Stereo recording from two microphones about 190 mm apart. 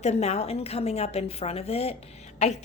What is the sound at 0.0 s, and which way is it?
A woman's voice, 35° left (ahead or behind).